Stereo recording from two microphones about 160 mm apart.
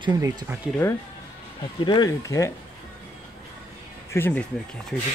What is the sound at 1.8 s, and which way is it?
Speech, 30° left (ahead or behind).